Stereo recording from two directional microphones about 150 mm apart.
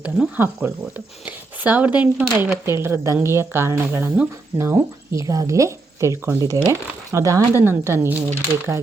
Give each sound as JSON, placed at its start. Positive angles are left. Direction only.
{"t": 0.0, "sound": "a woman's voice", "side_deg": -10}